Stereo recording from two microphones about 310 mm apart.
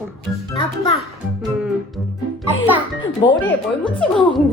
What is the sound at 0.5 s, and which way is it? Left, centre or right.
Speech, centre.